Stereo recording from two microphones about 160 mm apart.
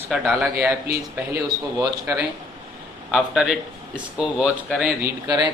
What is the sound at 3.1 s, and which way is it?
Speech, 5° right (ahead or behind).